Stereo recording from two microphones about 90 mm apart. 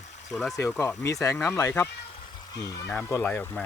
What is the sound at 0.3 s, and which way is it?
Speech, centre (ahead or behind).